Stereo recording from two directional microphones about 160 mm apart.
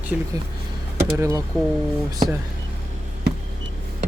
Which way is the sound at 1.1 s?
15° right (ahead or behind).